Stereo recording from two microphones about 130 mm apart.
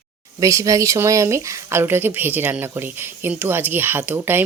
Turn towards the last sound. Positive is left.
turn(degrees=-15)  # may be behind; listen again after turning